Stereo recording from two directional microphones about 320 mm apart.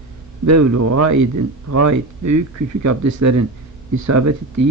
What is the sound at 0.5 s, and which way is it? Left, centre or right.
Speech, right.